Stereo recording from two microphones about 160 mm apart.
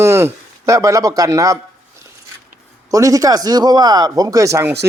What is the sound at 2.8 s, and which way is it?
Speech, 20° right (ahead or behind).